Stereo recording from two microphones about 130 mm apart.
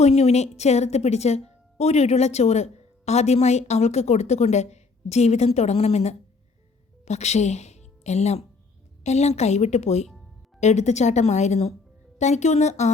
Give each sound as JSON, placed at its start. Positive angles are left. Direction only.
{"t": 0.0, "sound": "a woman's voice", "side_deg": 55}